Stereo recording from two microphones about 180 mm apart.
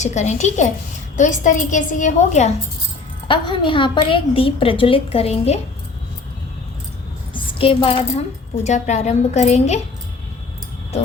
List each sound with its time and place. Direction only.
0.0 s a woman's voice: 40° left (ahead or behind)
3.2 s a woman's voice: 25° left (ahead or behind)
7.3 s a woman's voice: 30° left (ahead or behind)